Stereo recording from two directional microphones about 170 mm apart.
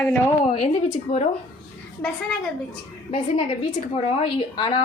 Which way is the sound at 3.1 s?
35° left (ahead or behind).